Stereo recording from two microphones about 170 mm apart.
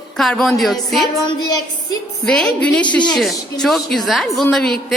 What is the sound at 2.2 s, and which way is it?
A woman's voice, 5° left (ahead or behind).